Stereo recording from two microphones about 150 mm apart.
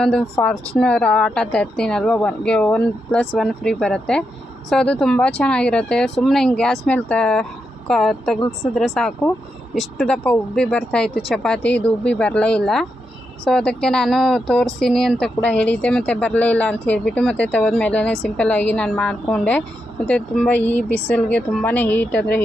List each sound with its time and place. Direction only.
0.0 s speech: 5° left (ahead or behind)
8.4 s a woman's voice: 20° left (ahead or behind)
8.7 s speech: 5° left (ahead or behind)